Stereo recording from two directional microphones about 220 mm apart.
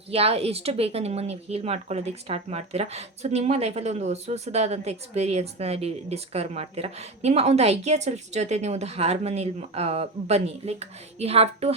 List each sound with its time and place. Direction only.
0.1 s speech: 25° right (ahead or behind)